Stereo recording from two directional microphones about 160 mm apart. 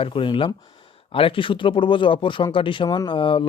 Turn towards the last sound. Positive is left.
turn(degrees=30)  # may be behind; listen again after turning